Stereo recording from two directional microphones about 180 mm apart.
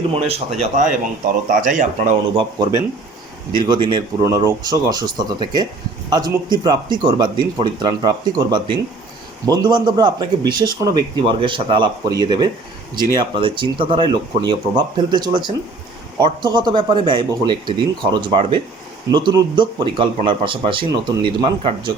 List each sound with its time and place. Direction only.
0.1 s speech: 35° right (ahead or behind)
0.6 s speech: 45° right (ahead or behind)
2.3 s speech: 25° right (ahead or behind)
6.1 s speech: 20° right (ahead or behind)